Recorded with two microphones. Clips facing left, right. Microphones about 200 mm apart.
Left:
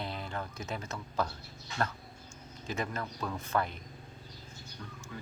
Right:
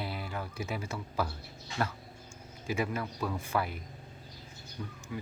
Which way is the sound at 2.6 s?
10° right (ahead or behind).